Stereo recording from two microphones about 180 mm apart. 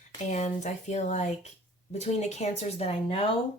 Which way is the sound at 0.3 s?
40° left (ahead or behind).